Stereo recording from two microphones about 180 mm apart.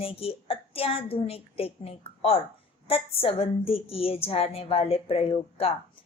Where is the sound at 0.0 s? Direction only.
35° left (ahead or behind).